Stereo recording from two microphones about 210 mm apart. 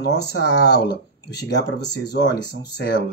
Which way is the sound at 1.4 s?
55° left (ahead or behind).